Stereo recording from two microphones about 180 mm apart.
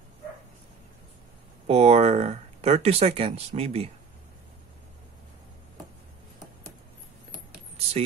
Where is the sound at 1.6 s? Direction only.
35° right (ahead or behind).